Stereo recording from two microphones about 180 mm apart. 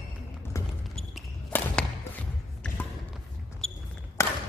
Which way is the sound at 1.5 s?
15° left (ahead or behind).